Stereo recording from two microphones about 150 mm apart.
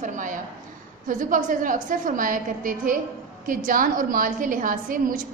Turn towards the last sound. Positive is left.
turn(degrees=-65)  # may be behind; listen again after turning